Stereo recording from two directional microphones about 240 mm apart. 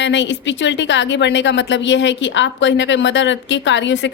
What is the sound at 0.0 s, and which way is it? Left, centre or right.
A woman's voice, left.